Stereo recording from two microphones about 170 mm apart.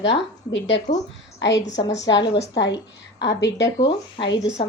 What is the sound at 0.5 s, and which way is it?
A woman's voice, 90° left.